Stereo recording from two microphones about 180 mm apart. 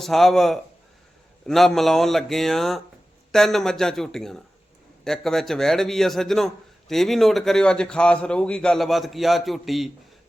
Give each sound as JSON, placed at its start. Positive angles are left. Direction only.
{"t": 0.0, "sound": "a man's voice", "side_deg": 0}